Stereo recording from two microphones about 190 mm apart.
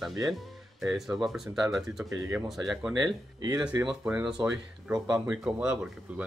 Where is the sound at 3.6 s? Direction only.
5° right (ahead or behind).